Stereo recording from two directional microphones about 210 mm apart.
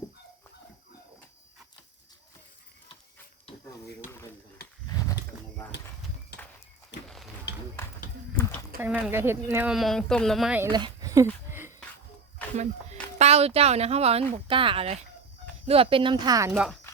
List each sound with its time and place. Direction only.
5.0 s bird: 15° left (ahead or behind)
8.8 s speech: 10° right (ahead or behind)
10.7 s speech: 20° right (ahead or behind)
12.5 s speech: 30° right (ahead or behind)
16.5 s speech: centre (ahead or behind)